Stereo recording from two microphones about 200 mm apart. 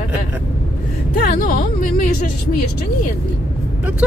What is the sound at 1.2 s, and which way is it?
Music, 45° left (ahead or behind).